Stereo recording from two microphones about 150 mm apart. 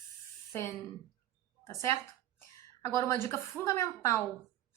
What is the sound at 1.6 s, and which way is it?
A woman's voice, 20° left (ahead or behind).